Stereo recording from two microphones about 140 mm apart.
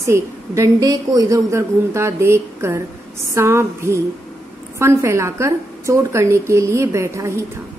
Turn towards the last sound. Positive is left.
turn(degrees=-20)  # may be behind; listen again after turning